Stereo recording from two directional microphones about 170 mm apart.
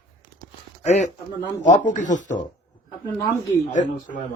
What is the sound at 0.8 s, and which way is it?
A man's voice, 40° left (ahead or behind).